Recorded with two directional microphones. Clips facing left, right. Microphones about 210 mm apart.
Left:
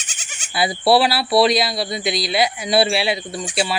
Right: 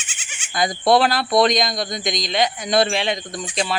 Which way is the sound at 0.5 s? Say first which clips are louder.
Left 1 dB; 5° left (ahead or behind).